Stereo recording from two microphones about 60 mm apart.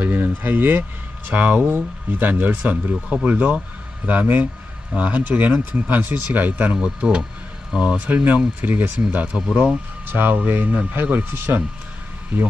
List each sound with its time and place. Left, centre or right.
0.0 s speech: right
8.1 s speech: right
10.0 s speech: right
12.3 s speech: right